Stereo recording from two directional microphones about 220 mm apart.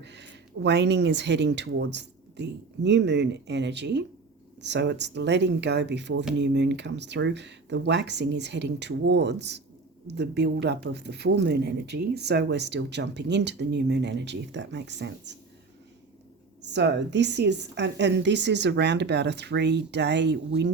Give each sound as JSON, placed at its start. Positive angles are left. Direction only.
{"t": 0.0, "sound": "speech", "side_deg": -50}
{"t": 16.6, "sound": "speech", "side_deg": -50}